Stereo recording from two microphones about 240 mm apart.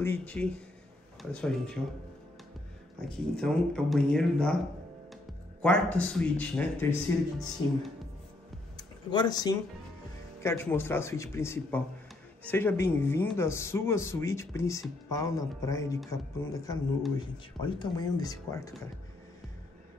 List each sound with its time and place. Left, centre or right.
0.0 s speech: centre
3.0 s speech: centre
5.6 s speech: centre
8.7 s a sound: centre
10.4 s speech: centre
17.6 s speech: centre